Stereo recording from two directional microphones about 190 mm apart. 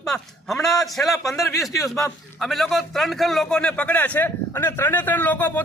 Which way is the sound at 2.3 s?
Centre (ahead or behind).